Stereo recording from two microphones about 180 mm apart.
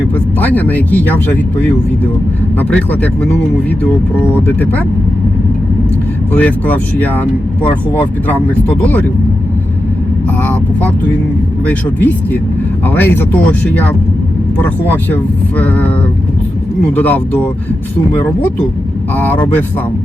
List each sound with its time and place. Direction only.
0.3 s speech: 10° left (ahead or behind)
6.3 s speech: 10° left (ahead or behind)
10.4 s speech: 10° left (ahead or behind)
16.9 s speech: 10° left (ahead or behind)
19.1 s speech: 10° left (ahead or behind)